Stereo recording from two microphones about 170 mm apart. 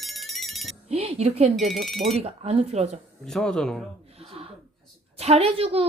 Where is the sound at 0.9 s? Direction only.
35° right (ahead or behind).